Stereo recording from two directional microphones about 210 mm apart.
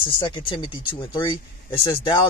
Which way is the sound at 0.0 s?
25° left (ahead or behind).